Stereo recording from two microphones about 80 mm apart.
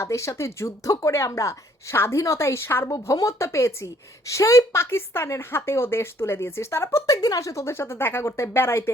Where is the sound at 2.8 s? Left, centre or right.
Left.